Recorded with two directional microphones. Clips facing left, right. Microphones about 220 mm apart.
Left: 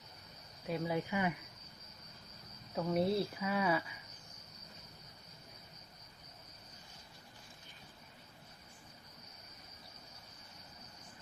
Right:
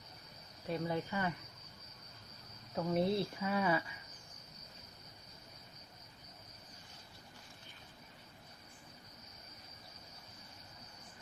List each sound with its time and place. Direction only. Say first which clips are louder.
0.7 s speech: left 1 dB; 10° left (ahead or behind)
2.7 s speech: left 1 dB; 5° left (ahead or behind)